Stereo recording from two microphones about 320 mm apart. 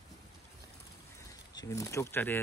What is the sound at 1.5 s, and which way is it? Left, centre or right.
Speech, centre.